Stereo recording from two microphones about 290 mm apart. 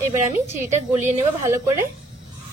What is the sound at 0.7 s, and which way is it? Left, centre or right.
Speech, right.